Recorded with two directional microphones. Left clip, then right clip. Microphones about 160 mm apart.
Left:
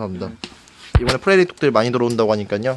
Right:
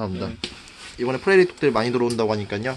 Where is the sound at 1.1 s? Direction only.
90° left.